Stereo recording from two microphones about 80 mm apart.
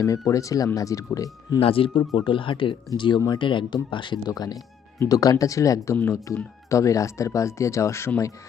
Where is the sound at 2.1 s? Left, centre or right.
Left.